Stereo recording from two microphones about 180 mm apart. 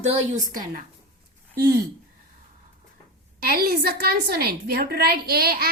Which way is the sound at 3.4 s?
55° right (ahead or behind).